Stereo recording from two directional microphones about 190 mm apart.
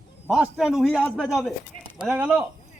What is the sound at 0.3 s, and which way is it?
A man's voice, 5° right (ahead or behind).